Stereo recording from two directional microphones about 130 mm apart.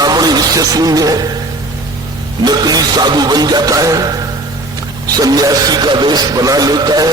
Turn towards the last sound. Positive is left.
turn(degrees=-30)  # may be behind; listen again after turning